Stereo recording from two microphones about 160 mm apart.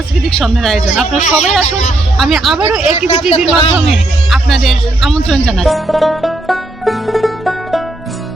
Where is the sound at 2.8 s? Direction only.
40° left (ahead or behind).